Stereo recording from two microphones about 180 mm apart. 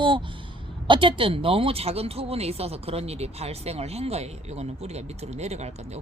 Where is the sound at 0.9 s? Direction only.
30° right (ahead or behind).